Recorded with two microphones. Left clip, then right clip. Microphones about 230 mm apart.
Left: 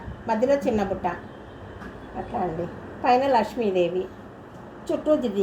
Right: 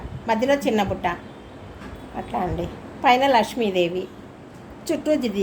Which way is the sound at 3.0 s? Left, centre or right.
Right.